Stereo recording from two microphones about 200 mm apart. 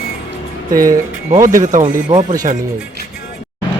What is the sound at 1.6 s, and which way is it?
Speech, 40° right (ahead or behind).